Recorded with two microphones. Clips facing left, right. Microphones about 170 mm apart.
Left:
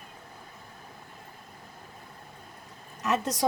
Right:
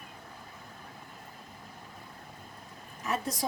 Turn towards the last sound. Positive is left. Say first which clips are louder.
# left 6 dB
turn(degrees=75)  # may be behind; listen again after turning